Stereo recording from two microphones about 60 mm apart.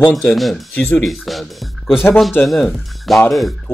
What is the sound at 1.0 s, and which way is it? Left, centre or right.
Speech, centre.